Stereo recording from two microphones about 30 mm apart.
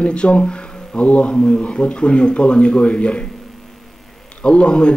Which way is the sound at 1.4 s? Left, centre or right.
Left.